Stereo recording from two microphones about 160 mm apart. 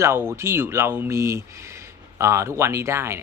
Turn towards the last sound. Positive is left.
turn(degrees=-15)  # may be behind; listen again after turning